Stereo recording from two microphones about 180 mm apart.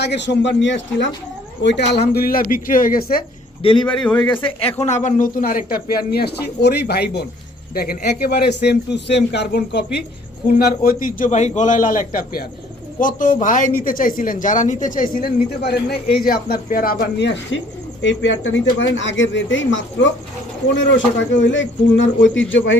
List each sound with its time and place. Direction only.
0.0 s a man's voice: 75° left (ahead or behind)
1.6 s speech: 70° left (ahead or behind); by 3.2 s 55° left (ahead or behind)
3.6 s a man's voice: 30° left (ahead or behind)
3.8 s a man's voice: 5° left (ahead or behind)
4.8 s speech: 40° left (ahead or behind); by 17.6 s 75° left (ahead or behind)
18.0 s speech: 90° left
21.4 s speech: 90° left